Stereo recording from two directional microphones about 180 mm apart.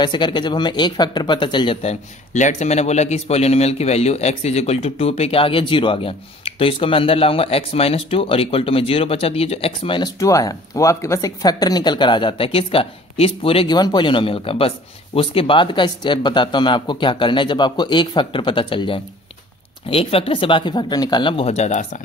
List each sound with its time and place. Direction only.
0.0 s speech: 25° left (ahead or behind)